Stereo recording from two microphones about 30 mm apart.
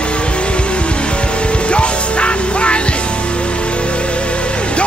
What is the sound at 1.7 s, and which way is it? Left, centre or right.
Music, left.